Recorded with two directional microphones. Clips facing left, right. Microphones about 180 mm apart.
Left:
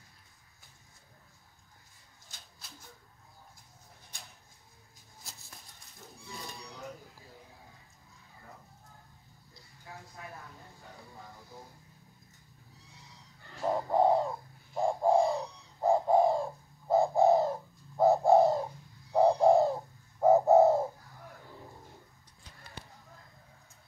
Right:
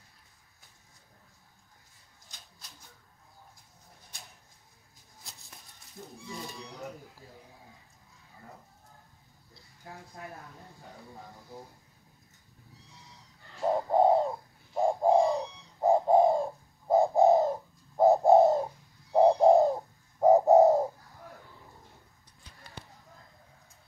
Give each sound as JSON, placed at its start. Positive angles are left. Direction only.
{"t": 13.9, "sound": "bird", "side_deg": -25}